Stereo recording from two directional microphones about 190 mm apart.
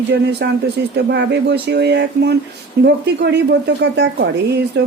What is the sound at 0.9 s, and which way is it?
Speech, 65° right (ahead or behind).